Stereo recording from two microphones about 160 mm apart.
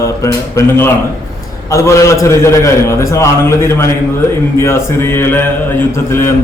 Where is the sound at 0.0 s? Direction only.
20° left (ahead or behind).